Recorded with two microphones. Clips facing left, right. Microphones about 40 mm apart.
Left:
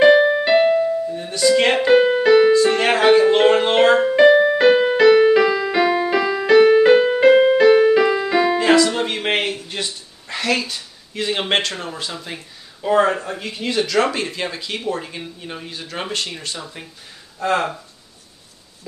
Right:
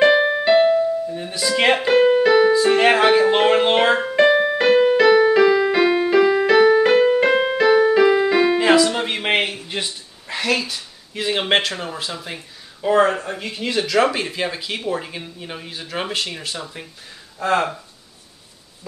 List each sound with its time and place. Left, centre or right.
0.0 s keyboard: centre
1.1 s music: centre
2.0 s keyboard: centre
2.5 s music: centre
5.7 s music: centre
6.4 s music: centre
8.0 s keyboard: centre
8.3 s music: centre
12.8 s speech: centre